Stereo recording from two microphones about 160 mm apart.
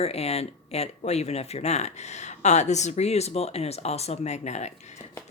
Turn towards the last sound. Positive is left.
turn(degrees=45)  # may be behind; listen again after turning